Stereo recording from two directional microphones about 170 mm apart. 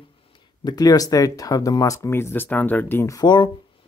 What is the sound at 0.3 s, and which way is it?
Speech, 25° left (ahead or behind).